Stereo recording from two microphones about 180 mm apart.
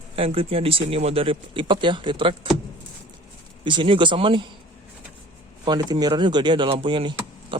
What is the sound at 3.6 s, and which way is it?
Speech, 25° right (ahead or behind).